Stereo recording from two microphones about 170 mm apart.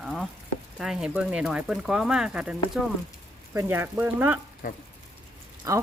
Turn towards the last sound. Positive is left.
turn(degrees=-20)  # may be behind; listen again after turning